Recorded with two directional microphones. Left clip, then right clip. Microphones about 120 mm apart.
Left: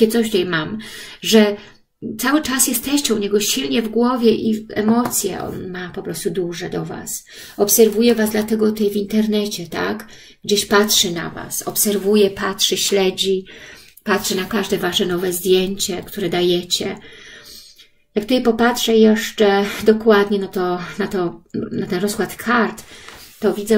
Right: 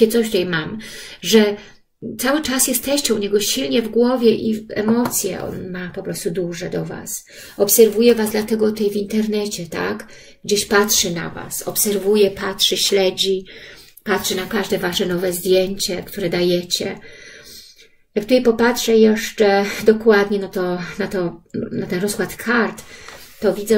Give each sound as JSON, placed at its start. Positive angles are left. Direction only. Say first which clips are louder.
{"t": 0.0, "sound": "speech", "louder": "right 1 dB", "side_deg": 40}
{"t": 18.1, "sound": "speech", "louder": "right 2 dB", "side_deg": 35}